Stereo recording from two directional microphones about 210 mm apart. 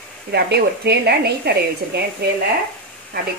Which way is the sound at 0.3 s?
50° right (ahead or behind).